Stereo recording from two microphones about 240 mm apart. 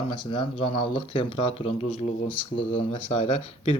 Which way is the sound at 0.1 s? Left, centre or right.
Centre.